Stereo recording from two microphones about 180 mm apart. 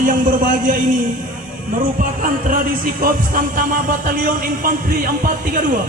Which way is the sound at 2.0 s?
50° right (ahead or behind).